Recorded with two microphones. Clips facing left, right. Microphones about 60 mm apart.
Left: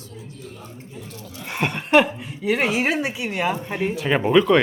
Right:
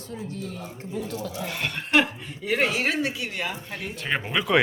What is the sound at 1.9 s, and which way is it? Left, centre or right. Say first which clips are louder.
Speech: left 5 dB; centre.